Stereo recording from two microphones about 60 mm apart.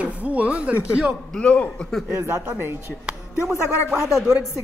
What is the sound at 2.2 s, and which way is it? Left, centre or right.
Speech, right.